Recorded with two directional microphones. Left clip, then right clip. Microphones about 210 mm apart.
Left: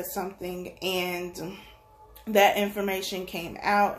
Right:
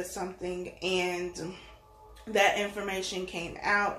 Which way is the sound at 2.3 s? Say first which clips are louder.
Left 4 dB; 50° left (ahead or behind).